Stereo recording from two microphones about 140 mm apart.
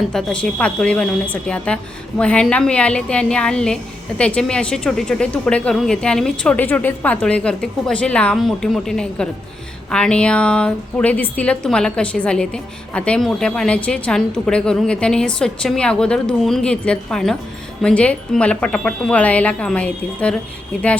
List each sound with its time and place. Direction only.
0.1 s speech: 5° left (ahead or behind)